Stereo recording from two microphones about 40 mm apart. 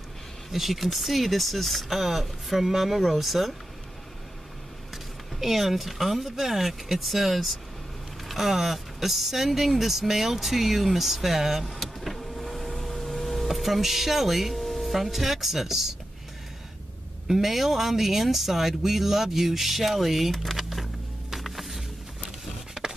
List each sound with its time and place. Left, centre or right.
0.5 s speech: centre
4.9 s speech: centre
11.6 s vehicle: centre
17.3 s speech: centre
22.8 s a sound: centre